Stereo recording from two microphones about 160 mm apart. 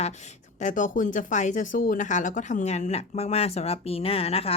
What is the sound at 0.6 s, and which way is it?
Speech, 55° left (ahead or behind).